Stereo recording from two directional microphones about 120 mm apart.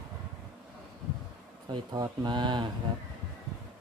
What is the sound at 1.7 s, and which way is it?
Speech, 35° right (ahead or behind).